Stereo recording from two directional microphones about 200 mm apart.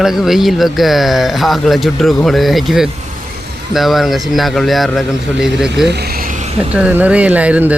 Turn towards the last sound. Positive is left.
turn(degrees=-5)  # may be behind; listen again after turning